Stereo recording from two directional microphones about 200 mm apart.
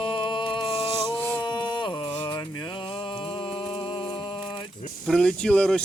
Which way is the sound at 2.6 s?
20° left (ahead or behind).